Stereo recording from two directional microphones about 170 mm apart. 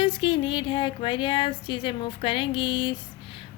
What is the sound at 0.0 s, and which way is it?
A woman's voice, 30° left (ahead or behind).